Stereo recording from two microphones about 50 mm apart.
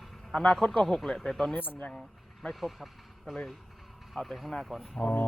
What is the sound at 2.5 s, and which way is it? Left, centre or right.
Speech, centre.